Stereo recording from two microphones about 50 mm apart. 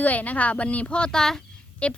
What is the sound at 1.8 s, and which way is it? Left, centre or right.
Speech, left.